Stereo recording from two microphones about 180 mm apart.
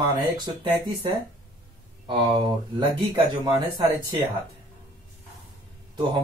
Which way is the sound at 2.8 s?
30° right (ahead or behind).